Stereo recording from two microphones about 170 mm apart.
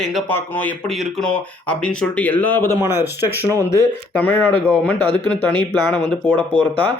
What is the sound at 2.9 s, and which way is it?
Speech, 15° right (ahead or behind).